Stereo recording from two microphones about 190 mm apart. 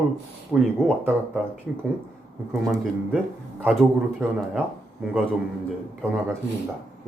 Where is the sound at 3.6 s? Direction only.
10° right (ahead or behind).